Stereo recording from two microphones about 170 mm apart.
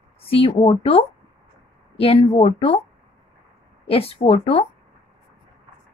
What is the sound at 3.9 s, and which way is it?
Speech, 35° left (ahead or behind).